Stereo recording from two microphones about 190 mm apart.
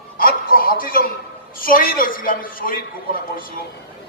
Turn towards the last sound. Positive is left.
turn(degrees=50)  # may be behind; listen again after turning